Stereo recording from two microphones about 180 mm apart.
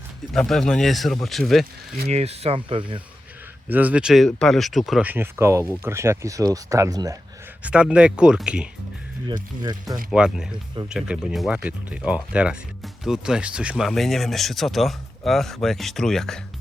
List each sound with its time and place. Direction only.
0.3 s speech: centre (ahead or behind)
2.0 s speech: 35° right (ahead or behind)
3.7 s speech: 10° right (ahead or behind)
7.6 s speech: 5° right (ahead or behind)
9.2 s speech: 25° right (ahead or behind)
10.1 s speech: 5° right (ahead or behind)